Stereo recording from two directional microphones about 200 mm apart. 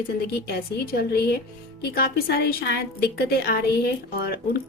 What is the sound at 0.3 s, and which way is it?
A woman's voice, 50° left (ahead or behind).